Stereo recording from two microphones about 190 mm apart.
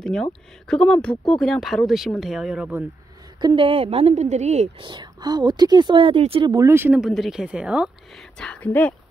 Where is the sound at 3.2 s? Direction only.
20° right (ahead or behind).